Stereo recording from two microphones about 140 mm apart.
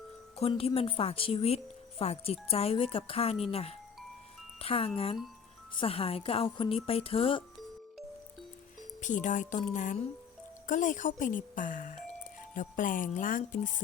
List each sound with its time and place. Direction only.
0.3 s speech: 45° left (ahead or behind)
9.0 s speech: 65° left (ahead or behind)